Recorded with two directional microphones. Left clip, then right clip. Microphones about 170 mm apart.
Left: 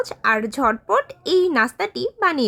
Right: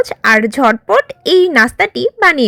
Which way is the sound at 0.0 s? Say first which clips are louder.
Right 9 dB; 25° right (ahead or behind).